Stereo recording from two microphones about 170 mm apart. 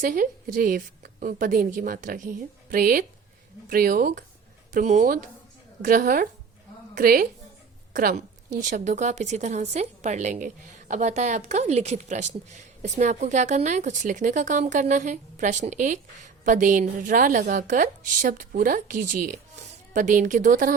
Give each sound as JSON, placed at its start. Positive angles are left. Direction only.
{"t": 0.0, "sound": "a woman's voice", "side_deg": -55}